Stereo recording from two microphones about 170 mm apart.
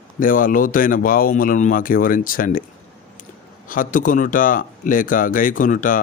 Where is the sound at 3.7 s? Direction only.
55° left (ahead or behind).